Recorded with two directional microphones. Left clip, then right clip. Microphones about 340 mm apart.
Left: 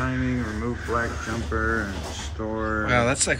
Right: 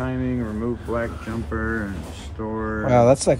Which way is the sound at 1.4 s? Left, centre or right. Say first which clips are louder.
Left 2 dB; centre.